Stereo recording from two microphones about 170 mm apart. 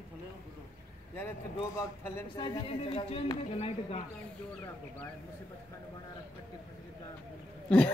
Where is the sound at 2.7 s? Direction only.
35° left (ahead or behind).